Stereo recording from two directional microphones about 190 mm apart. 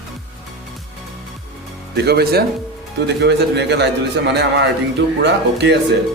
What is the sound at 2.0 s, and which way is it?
A man's voice, 60° right (ahead or behind).